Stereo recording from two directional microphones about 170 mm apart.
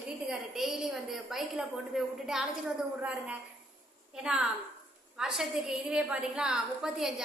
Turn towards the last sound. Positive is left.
turn(degrees=-5)  # may be behind; listen again after turning